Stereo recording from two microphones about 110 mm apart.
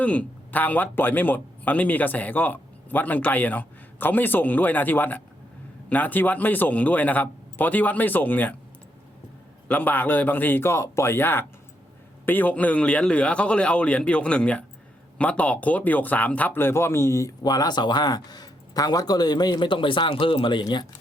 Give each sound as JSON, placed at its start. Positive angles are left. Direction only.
{"t": 0.0, "sound": "speech", "side_deg": 15}
{"t": 9.6, "sound": "speech", "side_deg": 15}